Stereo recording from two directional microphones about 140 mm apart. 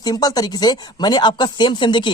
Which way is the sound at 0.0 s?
25° left (ahead or behind).